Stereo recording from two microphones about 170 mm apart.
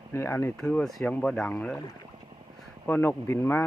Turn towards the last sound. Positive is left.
turn(degrees=15)  # may be behind; listen again after turning